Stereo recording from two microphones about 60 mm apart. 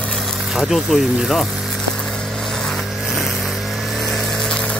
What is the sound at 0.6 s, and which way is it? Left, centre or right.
Speech, centre.